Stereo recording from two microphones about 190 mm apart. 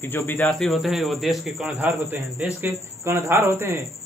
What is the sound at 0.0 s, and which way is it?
Speech, 10° left (ahead or behind).